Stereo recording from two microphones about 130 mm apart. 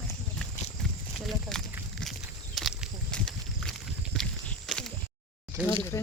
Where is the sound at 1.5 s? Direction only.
5° left (ahead or behind).